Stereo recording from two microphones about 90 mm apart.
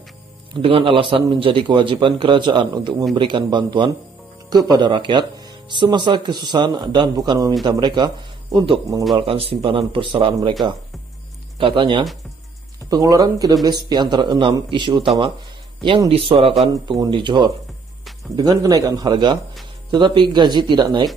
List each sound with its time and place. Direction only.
0.6 s a man's voice: 85° right; by 3.9 s 60° right (ahead or behind)
4.5 s a man's voice: 50° right (ahead or behind)
9.1 s a man's voice: 90° right
11.5 s speech: 70° right (ahead or behind)
12.9 s speech: 40° right (ahead or behind)
13.7 s a man's voice: 55° right (ahead or behind)
16.1 s speech: 90° right
17.1 s a man's voice: 55° right (ahead or behind)
18.3 s a man's voice: 40° right (ahead or behind)